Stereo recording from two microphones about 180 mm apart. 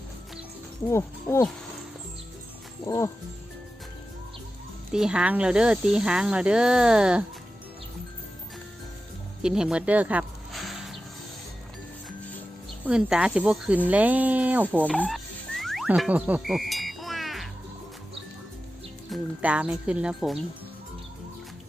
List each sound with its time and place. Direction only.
0.9 s speech: 15° left (ahead or behind)
2.8 s speech: 20° left (ahead or behind)
4.9 s speech: 5° right (ahead or behind)
9.4 s music: 5° right (ahead or behind)
12.8 s speech: 5° right (ahead or behind)
15.0 s music: centre (ahead or behind)
19.1 s speech: 5° right (ahead or behind)